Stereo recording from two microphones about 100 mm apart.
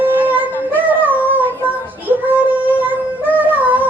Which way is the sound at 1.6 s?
20° right (ahead or behind).